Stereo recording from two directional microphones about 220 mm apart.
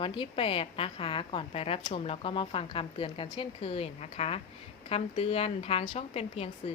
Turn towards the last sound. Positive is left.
turn(degrees=25)  # may be behind; listen again after turning